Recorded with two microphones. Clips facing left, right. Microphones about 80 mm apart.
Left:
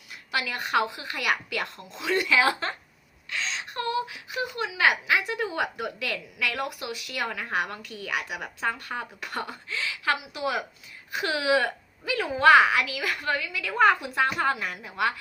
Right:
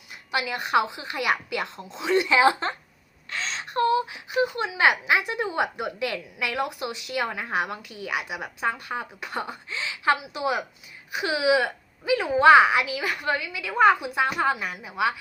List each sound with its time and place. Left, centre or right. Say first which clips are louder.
0.3 s a woman's voice: right 2 dB; right
3.2 s a woman's voice: right 1 dB; right; by 15.1 s centre